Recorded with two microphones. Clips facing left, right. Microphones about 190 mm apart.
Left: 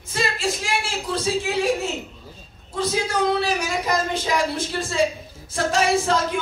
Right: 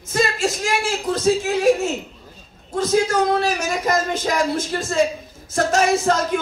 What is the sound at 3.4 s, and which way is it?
A man's voice, 45° right (ahead or behind).